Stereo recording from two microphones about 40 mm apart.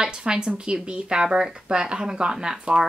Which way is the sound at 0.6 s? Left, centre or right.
Centre.